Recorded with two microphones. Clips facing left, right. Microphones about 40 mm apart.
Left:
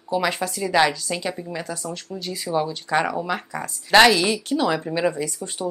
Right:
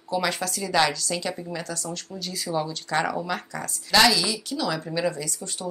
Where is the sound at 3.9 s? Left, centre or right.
Left.